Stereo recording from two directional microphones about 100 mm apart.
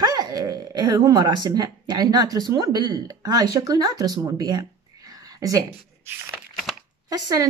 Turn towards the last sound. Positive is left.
turn(degrees=-40)  # may be behind; listen again after turning